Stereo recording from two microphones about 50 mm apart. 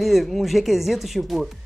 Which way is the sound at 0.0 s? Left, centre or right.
Centre.